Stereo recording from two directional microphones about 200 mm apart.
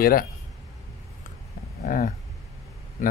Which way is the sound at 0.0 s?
45° left (ahead or behind).